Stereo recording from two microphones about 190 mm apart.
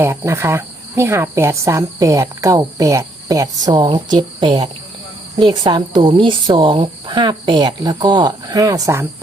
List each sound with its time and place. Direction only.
0.0 s cricket: 15° right (ahead or behind)
5.4 s speech: 25° right (ahead or behind)